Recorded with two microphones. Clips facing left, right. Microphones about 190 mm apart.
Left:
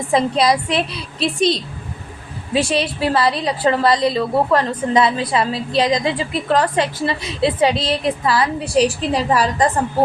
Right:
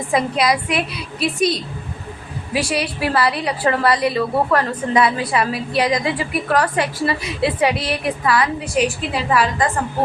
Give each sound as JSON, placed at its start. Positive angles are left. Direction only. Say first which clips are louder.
{"t": 0.1, "sound": "a woman's voice", "louder": "left 2 dB", "side_deg": 25}